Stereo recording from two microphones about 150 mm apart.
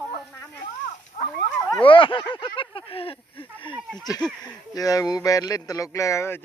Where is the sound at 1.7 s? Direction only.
35° left (ahead or behind).